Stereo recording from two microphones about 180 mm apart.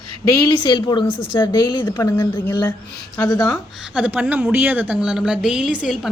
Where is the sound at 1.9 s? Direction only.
15° left (ahead or behind).